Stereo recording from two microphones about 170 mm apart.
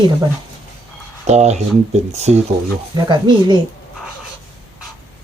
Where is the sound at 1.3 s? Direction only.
40° right (ahead or behind).